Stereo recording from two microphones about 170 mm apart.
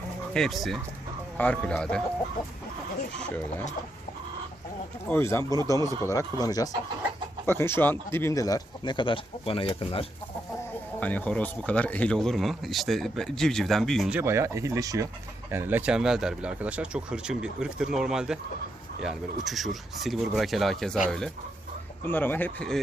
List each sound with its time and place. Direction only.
0.3 s speech: centre (ahead or behind)
5.0 s speech: 15° left (ahead or behind); by 10.1 s 35° left (ahead or behind)
11.0 s speech: 10° left (ahead or behind)
14.2 s speech: 15° right (ahead or behind); by 22.8 s 5° left (ahead or behind)